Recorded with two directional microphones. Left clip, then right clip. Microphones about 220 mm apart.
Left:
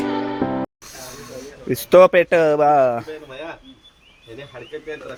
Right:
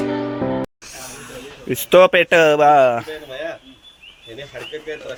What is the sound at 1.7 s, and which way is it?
Speech, 10° left (ahead or behind).